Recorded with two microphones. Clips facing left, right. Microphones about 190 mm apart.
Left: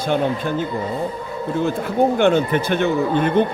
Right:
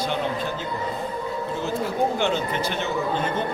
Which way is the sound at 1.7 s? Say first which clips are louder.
Left 5 dB; 55° left (ahead or behind).